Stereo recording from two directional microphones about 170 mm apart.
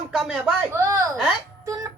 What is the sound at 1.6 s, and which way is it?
Music, 20° right (ahead or behind).